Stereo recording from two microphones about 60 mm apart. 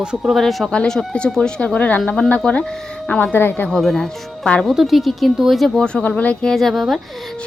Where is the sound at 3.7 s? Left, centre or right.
Centre.